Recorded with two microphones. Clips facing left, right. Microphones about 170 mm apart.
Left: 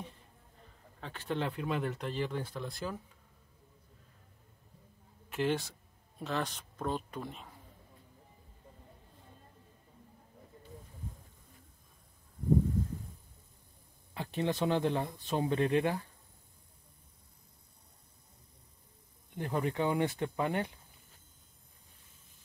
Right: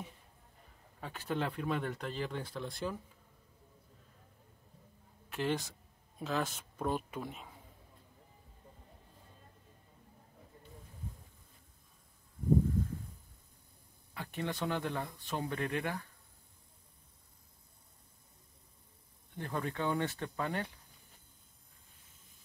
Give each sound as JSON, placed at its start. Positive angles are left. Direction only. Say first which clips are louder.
{"t": 1.0, "sound": "speech", "louder": "left 1 dB", "side_deg": -5}
{"t": 5.3, "sound": "a man's voice", "louder": "left 3 dB", "side_deg": 0}
{"t": 14.1, "sound": "speech", "louder": "left 5 dB", "side_deg": 20}
{"t": 19.3, "sound": "speech", "louder": "left 5 dB", "side_deg": 15}